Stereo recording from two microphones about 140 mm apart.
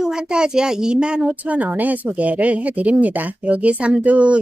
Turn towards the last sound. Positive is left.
turn(degrees=-10)  # may be behind; listen again after turning